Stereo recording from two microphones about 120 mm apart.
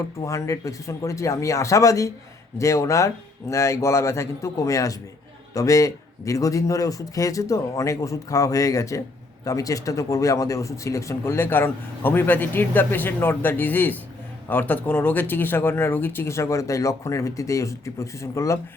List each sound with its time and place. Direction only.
0.2 s speech: 25° left (ahead or behind)